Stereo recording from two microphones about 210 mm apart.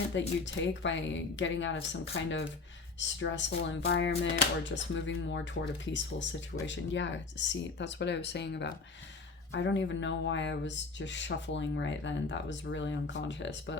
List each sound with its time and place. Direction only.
0.1 s speech: 60° left (ahead or behind)
3.0 s speech: 60° left (ahead or behind)